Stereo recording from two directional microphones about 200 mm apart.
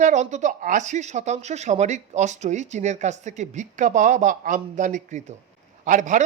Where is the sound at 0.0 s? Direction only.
35° right (ahead or behind).